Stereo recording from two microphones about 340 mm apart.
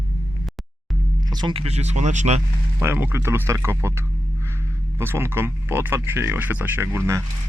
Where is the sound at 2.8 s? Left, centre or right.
Centre.